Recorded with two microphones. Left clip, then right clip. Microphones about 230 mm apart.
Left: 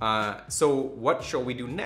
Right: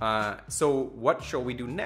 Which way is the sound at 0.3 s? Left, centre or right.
Right.